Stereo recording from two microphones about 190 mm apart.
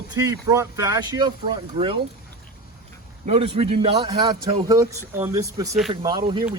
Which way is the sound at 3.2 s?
35° right (ahead or behind).